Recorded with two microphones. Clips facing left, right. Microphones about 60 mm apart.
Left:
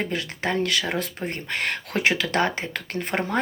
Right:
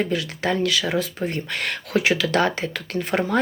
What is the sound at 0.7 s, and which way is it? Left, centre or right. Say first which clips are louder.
Speech: right 3 dB; left.